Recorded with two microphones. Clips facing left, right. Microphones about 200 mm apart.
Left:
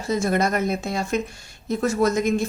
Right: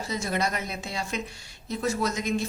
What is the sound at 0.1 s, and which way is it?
A woman's voice, 50° left (ahead or behind).